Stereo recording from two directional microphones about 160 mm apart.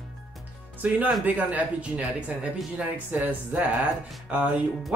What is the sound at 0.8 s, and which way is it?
Speech, 10° right (ahead or behind).